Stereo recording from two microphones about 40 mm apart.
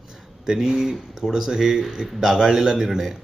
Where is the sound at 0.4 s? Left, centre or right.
Centre.